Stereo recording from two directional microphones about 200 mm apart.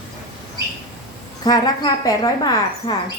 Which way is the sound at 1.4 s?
20° left (ahead or behind).